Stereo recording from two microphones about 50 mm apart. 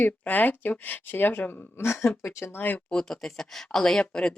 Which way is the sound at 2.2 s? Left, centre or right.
Left.